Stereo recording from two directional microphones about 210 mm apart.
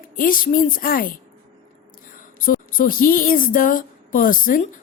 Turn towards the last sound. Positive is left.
turn(degrees=40)  # may be behind; listen again after turning